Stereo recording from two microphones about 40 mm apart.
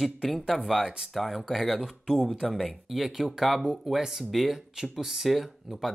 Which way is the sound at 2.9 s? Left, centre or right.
Centre.